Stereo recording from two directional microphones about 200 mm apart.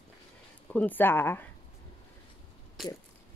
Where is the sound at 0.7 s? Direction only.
10° left (ahead or behind).